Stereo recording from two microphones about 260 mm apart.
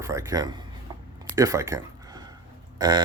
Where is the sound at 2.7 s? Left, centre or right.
Centre.